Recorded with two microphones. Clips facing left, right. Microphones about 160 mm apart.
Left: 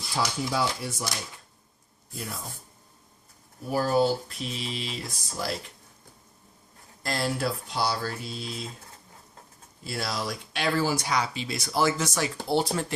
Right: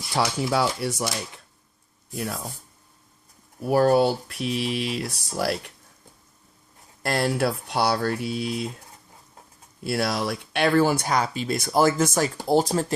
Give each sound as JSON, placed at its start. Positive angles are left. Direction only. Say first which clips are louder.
{"t": 0.1, "sound": "speech", "louder": "right 5 dB", "side_deg": -70}
{"t": 3.7, "sound": "speech", "louder": "right 5 dB", "side_deg": -70}
{"t": 7.0, "sound": "speech", "louder": "right 5 dB", "side_deg": -60}
{"t": 9.8, "sound": "speech", "louder": "right 7 dB", "side_deg": -65}